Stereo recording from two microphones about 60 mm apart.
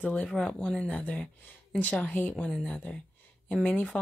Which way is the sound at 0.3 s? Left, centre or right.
Centre.